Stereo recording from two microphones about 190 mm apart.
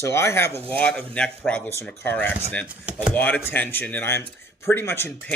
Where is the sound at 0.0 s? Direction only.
15° left (ahead or behind).